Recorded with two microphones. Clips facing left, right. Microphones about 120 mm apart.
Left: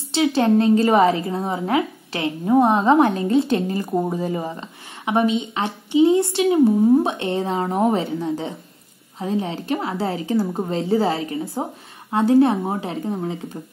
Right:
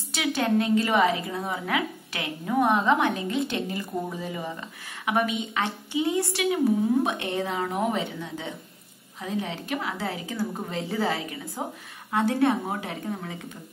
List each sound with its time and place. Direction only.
0.1 s a woman's voice: 30° left (ahead or behind)